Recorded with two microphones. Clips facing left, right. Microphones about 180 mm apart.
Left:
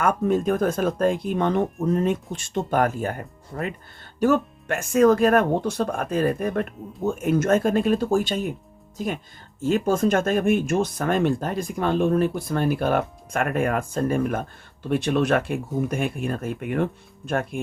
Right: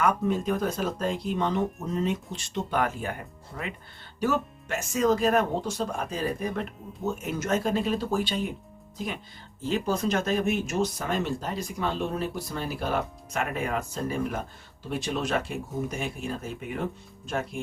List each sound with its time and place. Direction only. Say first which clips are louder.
0.0 s speech: left 4 dB; 50° left (ahead or behind)
9.6 s speech: left 6 dB; 50° left (ahead or behind)